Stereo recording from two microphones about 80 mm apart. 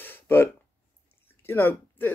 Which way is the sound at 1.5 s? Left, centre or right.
Left.